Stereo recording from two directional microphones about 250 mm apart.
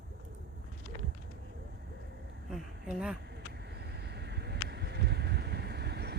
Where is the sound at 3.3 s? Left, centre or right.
Right.